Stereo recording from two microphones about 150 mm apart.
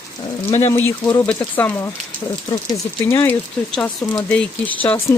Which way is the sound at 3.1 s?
15° left (ahead or behind).